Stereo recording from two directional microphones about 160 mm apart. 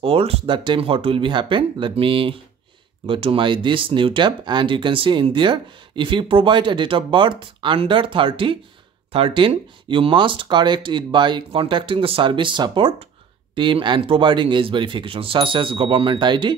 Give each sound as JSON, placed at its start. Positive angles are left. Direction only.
{"t": 0.0, "sound": "speech", "side_deg": -35}